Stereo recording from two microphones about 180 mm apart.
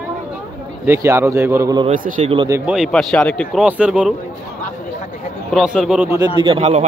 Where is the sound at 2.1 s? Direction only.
40° right (ahead or behind).